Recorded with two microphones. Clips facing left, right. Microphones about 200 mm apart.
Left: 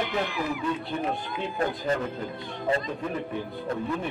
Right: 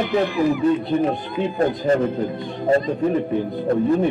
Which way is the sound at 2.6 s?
45° right (ahead or behind).